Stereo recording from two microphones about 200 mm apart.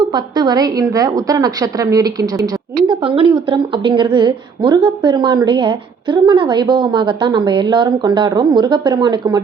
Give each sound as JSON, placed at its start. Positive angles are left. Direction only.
{"t": 0.1, "sound": "a woman's voice", "side_deg": -20}